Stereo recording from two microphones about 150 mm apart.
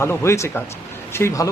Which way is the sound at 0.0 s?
15° left (ahead or behind).